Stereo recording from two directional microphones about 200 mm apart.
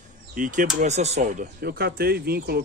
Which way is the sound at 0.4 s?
40° right (ahead or behind).